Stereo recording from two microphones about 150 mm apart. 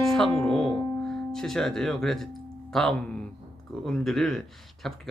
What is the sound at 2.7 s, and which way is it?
Speech, 5° left (ahead or behind).